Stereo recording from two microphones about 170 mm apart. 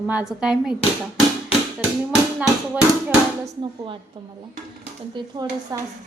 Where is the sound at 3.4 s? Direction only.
25° right (ahead or behind).